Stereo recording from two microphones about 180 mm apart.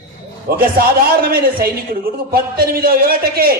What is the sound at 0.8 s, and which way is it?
A man's voice, 55° right (ahead or behind).